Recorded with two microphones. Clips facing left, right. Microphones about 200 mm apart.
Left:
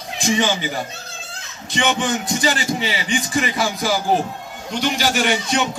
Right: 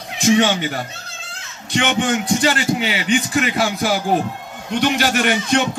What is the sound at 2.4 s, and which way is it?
Speech, 65° right (ahead or behind).